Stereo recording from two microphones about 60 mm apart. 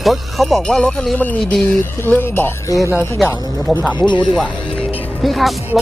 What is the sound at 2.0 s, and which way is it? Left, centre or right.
Speech, left.